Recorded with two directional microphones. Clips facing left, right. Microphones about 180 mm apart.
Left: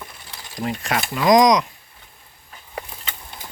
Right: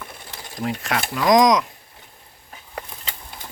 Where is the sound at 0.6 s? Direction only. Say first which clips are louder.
Even; centre (ahead or behind).